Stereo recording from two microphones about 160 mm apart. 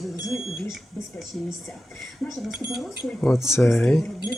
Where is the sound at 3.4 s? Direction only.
15° left (ahead or behind).